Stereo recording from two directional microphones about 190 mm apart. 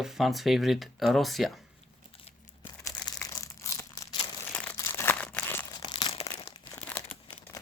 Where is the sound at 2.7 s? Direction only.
20° left (ahead or behind).